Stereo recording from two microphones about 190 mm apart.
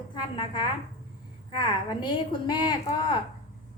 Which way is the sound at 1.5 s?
25° left (ahead or behind).